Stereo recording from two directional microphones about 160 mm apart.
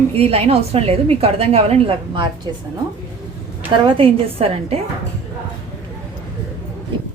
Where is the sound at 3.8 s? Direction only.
35° right (ahead or behind).